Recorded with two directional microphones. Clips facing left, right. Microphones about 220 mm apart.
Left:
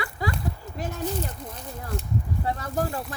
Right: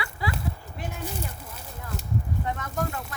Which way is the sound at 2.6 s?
35° left (ahead or behind).